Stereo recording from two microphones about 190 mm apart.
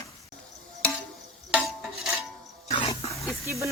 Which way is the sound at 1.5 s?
5° right (ahead or behind).